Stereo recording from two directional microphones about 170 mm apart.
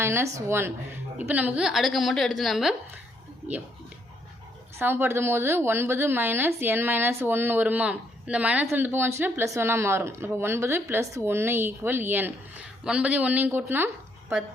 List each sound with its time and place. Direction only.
0.0 s a woman's voice: 15° right (ahead or behind)
4.8 s a woman's voice: 15° right (ahead or behind)